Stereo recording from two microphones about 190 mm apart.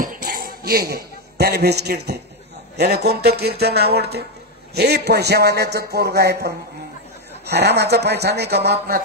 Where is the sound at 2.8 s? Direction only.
60° right (ahead or behind).